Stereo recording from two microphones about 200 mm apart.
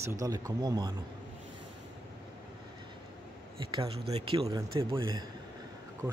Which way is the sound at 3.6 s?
25° right (ahead or behind).